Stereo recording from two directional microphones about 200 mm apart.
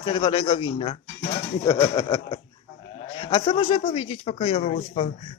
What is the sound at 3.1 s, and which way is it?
A man's voice, 30° left (ahead or behind).